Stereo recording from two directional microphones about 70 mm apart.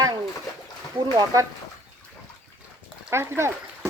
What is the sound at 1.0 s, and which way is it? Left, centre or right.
Speech, right.